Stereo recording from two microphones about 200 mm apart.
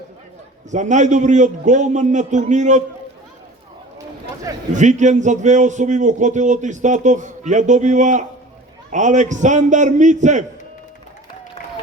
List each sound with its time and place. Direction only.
0.7 s a man's voice: 35° right (ahead or behind)
4.7 s a man's voice: 35° right (ahead or behind)